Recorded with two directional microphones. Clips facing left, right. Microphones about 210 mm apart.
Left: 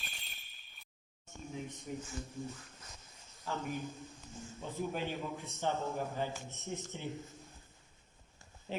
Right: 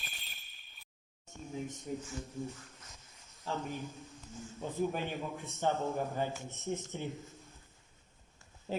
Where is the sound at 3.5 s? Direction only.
30° right (ahead or behind).